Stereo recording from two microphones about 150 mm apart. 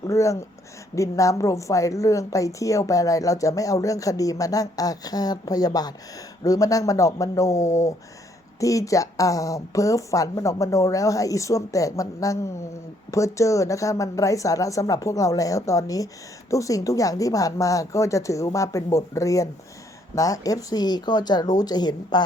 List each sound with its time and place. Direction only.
0.1 s a woman's voice: 20° left (ahead or behind)